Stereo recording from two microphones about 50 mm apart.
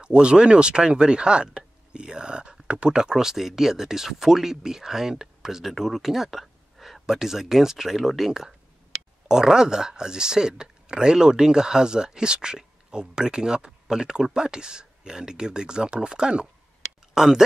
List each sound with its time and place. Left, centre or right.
0.0 s speech: centre